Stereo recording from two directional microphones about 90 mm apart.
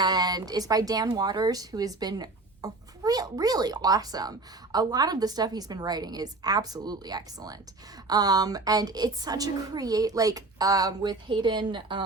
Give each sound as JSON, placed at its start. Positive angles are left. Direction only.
{"t": 0.0, "sound": "speech", "side_deg": -50}